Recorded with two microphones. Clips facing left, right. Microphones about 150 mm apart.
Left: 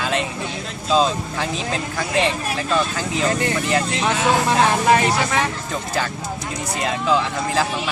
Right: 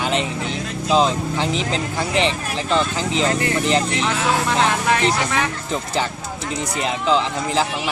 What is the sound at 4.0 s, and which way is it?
Speech, 20° left (ahead or behind).